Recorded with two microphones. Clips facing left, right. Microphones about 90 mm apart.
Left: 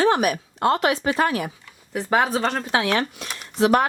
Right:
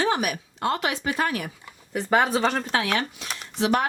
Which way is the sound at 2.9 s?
45° left (ahead or behind).